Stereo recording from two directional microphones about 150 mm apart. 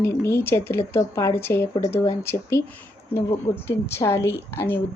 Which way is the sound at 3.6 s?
15° left (ahead or behind).